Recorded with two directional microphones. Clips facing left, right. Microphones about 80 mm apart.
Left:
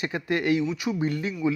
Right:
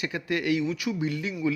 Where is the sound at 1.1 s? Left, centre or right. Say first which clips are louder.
Left 2 dB; left.